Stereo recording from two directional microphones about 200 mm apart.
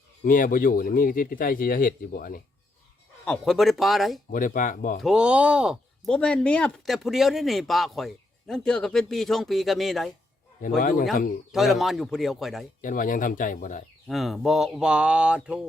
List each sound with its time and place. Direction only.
0.3 s a man's voice: 45° left (ahead or behind)
3.2 s speech: centre (ahead or behind)
4.3 s a man's voice: 40° left (ahead or behind)
4.9 s speech: 5° right (ahead or behind)
10.8 s a man's voice: 45° left (ahead or behind)
11.5 s speech: centre (ahead or behind)
12.8 s a man's voice: 45° left (ahead or behind)
14.1 s speech: centre (ahead or behind)